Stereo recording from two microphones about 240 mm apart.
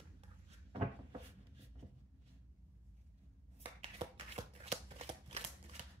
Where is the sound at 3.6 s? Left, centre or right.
Right.